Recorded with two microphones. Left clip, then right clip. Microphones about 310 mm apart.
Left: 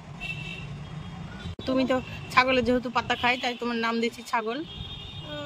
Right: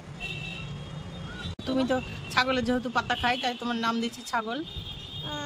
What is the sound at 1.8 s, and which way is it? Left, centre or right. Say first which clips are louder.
A man's voice: left 1 dB; centre.